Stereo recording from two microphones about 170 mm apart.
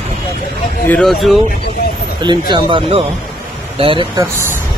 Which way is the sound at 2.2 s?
25° right (ahead or behind).